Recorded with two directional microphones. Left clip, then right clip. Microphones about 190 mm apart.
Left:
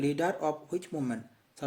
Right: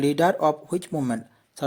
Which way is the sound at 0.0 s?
45° right (ahead or behind).